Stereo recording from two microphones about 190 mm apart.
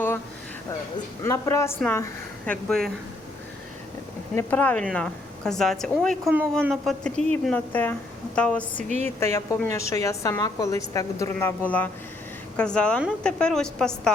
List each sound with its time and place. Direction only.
1.2 s a woman's voice: 15° left (ahead or behind)
4.4 s a woman's voice: 10° left (ahead or behind)
12.5 s a woman's voice: 5° left (ahead or behind)